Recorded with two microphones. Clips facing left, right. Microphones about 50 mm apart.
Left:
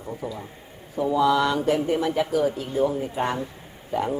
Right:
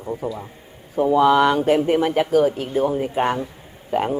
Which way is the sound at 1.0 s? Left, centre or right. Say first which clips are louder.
Right 5 dB; right.